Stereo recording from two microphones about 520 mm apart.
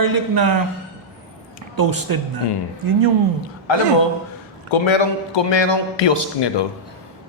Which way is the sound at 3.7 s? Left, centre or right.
Left.